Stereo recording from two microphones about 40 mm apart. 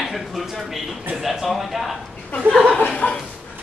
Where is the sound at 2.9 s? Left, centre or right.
Left.